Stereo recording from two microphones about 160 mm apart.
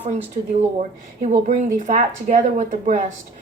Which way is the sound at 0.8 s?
55° right (ahead or behind).